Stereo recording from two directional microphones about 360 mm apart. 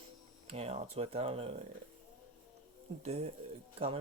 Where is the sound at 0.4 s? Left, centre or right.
Centre.